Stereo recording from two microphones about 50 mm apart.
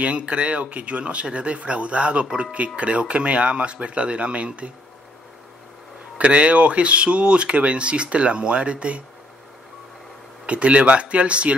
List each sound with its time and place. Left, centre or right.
0.0 s speech: right
2.2 s speech: centre
2.5 s speech: right
6.1 s speech: right
10.4 s speech: right